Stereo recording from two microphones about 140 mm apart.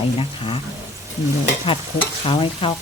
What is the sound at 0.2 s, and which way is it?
Stir, 40° left (ahead or behind).